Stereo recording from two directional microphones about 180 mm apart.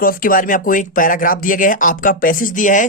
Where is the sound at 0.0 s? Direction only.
50° left (ahead or behind).